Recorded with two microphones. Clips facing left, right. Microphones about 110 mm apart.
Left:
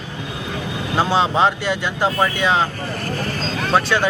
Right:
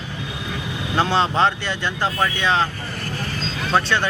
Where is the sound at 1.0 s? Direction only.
10° left (ahead or behind).